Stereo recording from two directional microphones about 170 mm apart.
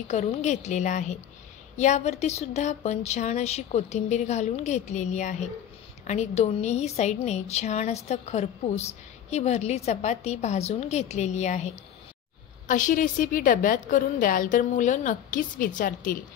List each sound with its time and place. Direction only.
0.1 s a woman's voice: 40° left (ahead or behind)